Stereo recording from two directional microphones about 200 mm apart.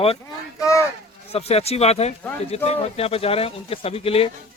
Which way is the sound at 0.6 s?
15° left (ahead or behind).